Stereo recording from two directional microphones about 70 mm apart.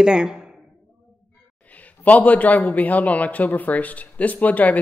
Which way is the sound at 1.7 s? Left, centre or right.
Left.